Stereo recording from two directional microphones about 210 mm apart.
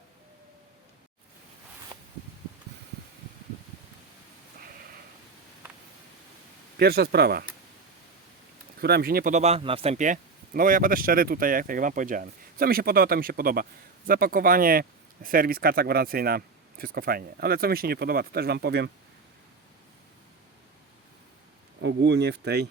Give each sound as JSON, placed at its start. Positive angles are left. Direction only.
{"t": 6.7, "sound": "speech", "side_deg": -50}
{"t": 8.8, "sound": "speech", "side_deg": -50}
{"t": 21.8, "sound": "speech", "side_deg": -60}